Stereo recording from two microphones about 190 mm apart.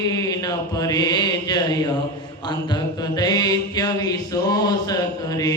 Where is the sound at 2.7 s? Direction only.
20° left (ahead or behind).